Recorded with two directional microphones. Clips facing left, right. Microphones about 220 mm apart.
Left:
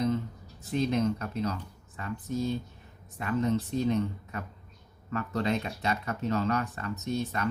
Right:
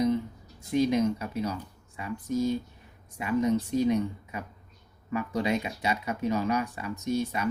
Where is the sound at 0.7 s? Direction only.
10° right (ahead or behind).